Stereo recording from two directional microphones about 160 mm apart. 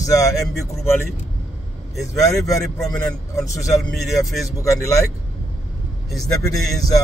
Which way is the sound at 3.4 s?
20° left (ahead or behind).